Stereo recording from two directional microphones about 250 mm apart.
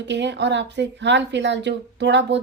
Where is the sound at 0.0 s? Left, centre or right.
Right.